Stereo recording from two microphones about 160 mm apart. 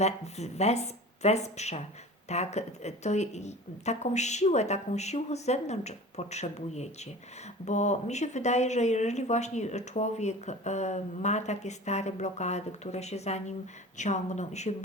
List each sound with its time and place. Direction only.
0.0 s speech: 45° left (ahead or behind)